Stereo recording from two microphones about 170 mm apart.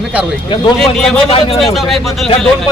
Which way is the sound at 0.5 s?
25° left (ahead or behind).